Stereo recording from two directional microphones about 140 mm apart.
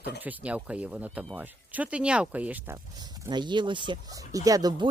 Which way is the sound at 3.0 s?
30° right (ahead or behind).